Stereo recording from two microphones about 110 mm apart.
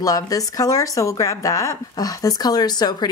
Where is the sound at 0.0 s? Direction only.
35° left (ahead or behind).